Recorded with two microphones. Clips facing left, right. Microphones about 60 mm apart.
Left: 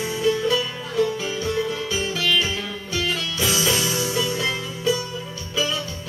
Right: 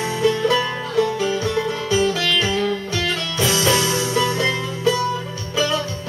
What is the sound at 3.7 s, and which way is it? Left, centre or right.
Music, right.